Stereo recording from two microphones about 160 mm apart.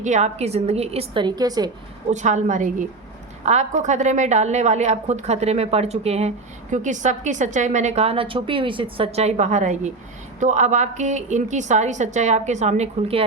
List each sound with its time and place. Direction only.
0.0 s a woman's voice: 45° right (ahead or behind); by 1.7 s 25° right (ahead or behind)
2.0 s a woman's voice: 50° right (ahead or behind)